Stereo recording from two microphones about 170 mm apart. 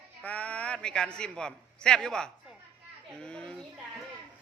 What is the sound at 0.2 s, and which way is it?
A man's voice, 10° left (ahead or behind).